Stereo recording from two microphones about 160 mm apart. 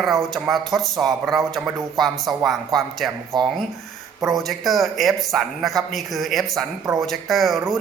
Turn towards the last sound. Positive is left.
turn(degrees=0)  # may be behind; listen again after turning